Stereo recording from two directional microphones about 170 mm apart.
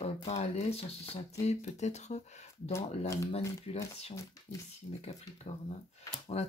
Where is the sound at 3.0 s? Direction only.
20° left (ahead or behind).